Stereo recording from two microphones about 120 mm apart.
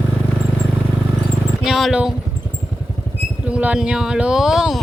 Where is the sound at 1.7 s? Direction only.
Centre (ahead or behind).